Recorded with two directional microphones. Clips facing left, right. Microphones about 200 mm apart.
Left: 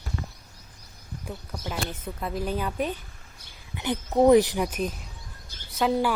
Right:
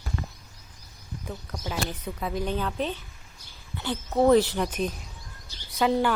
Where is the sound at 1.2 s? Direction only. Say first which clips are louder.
Even; 10° left (ahead or behind).